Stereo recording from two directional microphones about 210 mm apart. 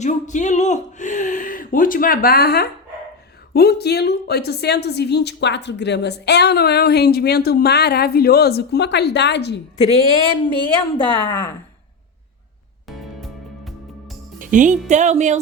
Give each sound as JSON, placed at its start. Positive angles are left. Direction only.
{"t": 0.0, "sound": "a woman's voice", "side_deg": 35}
{"t": 9.7, "sound": "speech", "side_deg": 30}
{"t": 12.9, "sound": "music", "side_deg": 0}
{"t": 14.3, "sound": "speech", "side_deg": -40}